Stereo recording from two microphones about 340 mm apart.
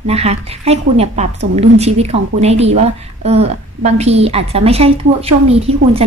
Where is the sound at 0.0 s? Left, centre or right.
Centre.